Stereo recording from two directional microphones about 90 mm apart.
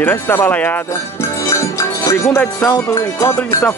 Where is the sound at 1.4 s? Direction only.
35° left (ahead or behind).